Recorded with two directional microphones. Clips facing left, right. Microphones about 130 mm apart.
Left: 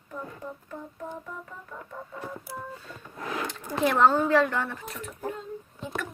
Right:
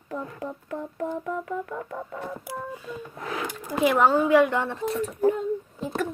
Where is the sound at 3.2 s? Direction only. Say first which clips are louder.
Even; 10° right (ahead or behind).